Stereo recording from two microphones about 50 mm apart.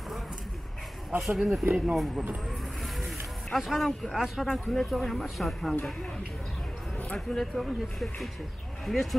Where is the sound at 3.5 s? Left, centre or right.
Centre.